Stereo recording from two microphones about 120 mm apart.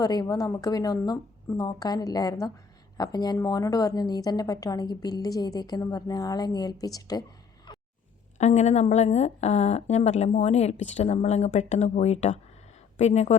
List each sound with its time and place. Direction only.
0.0 s a woman's voice: 35° left (ahead or behind)
7.7 s a sound: 40° left (ahead or behind)
8.4 s a woman's voice: 75° left (ahead or behind)